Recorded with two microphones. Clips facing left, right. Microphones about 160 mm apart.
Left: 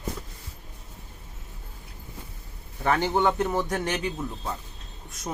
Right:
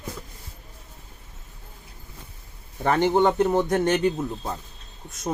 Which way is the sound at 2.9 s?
20° right (ahead or behind).